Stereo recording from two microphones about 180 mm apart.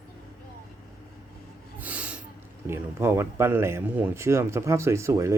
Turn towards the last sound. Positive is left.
turn(degrees=-15)  # may be behind; listen again after turning